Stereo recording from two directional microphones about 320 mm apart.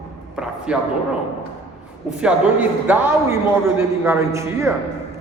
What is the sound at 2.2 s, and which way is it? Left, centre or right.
A man's voice, centre.